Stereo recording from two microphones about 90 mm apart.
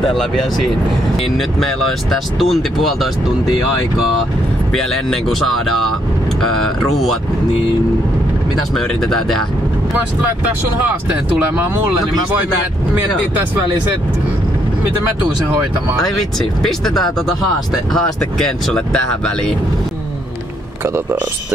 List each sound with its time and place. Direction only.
0.0 s speech: 5° left (ahead or behind)
4.7 s speech: 5° left (ahead or behind)
6.4 s speech: 5° left (ahead or behind)
8.7 s speech: 5° left (ahead or behind)
11.1 s speech: 20° right (ahead or behind)
16.0 s speech: 5° left (ahead or behind)
18.7 s speech: 10° left (ahead or behind)
20.8 s speech: 25° right (ahead or behind)